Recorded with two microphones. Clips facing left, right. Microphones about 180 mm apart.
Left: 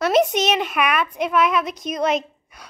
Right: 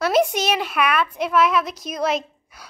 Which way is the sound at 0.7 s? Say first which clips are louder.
Even; 10° left (ahead or behind).